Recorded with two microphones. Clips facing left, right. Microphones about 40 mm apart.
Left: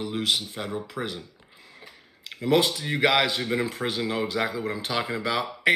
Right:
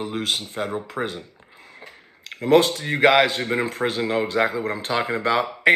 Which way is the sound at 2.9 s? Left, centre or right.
Right.